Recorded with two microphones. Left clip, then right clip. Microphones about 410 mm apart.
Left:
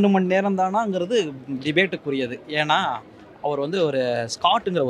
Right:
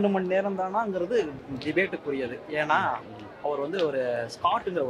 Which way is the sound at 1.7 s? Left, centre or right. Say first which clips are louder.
Left 5 dB; left.